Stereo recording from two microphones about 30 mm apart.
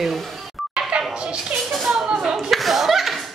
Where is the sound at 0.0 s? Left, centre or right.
Centre.